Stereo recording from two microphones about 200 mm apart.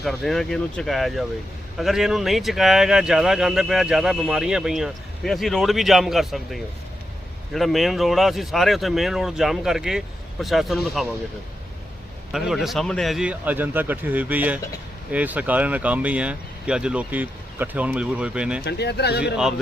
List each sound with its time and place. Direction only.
0.0 s speech: centre (ahead or behind)
12.3 s speech: centre (ahead or behind)
18.6 s speech: 55° left (ahead or behind)